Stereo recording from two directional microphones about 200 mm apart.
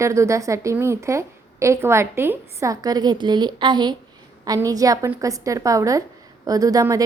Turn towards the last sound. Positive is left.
turn(degrees=-15)  # may be behind; listen again after turning